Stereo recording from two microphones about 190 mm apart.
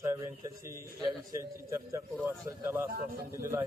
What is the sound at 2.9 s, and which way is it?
Speech, 50° right (ahead or behind).